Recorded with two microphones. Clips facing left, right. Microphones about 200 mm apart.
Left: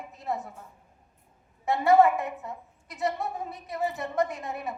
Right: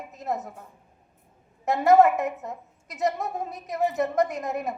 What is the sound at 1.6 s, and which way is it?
A woman's voice, 40° right (ahead or behind).